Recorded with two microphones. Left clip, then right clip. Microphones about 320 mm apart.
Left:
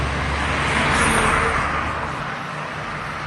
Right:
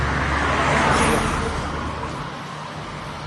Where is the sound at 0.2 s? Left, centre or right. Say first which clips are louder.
Right 2 dB; right.